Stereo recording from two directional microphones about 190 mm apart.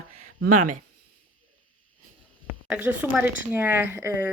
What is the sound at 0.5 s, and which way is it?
Speech, 40° right (ahead or behind).